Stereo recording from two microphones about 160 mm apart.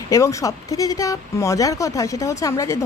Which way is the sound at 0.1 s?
20° left (ahead or behind).